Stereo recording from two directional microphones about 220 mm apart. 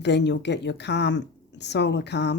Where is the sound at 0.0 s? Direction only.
50° left (ahead or behind).